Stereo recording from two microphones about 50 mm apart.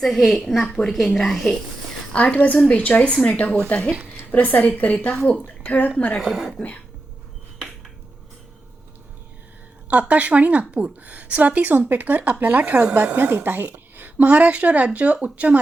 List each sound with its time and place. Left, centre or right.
0.0 s a woman's voice: centre
2.1 s a woman's voice: left
5.1 s speech: centre
5.6 s speech: left
6.1 s speech: centre
9.9 s a woman's voice: right
13.7 s a sound: right
14.3 s speech: right